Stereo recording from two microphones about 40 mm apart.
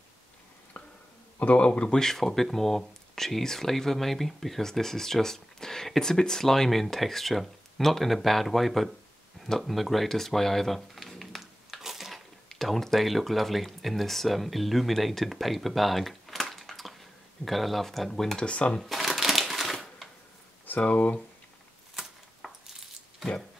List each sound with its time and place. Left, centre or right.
1.4 s speech: left
1.7 s speech: centre
9.4 s a sound: centre
12.4 s speech: centre
18.4 s speech: left
18.9 s crushing: centre
20.8 s speech: left
21.9 s a sound: centre